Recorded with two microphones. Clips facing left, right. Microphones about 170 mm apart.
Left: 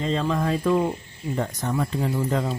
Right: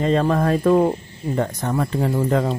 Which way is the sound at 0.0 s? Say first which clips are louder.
Right 6 dB; 55° right (ahead or behind).